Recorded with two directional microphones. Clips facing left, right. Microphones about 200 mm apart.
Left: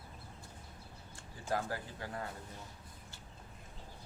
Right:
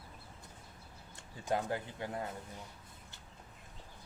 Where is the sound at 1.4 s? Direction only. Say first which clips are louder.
Right 2 dB; 20° right (ahead or behind).